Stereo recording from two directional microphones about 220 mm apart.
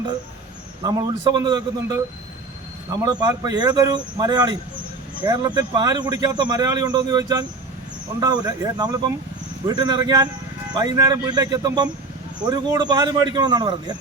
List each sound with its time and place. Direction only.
0.9 s speech: 20° right (ahead or behind)